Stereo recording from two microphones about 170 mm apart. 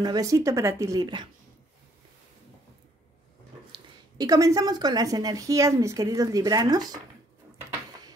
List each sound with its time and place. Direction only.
0.0 s a woman's voice: 20° right (ahead or behind)
3.7 s a woman's voice: 20° right (ahead or behind)